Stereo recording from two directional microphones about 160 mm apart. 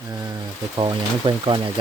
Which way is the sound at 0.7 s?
30° right (ahead or behind).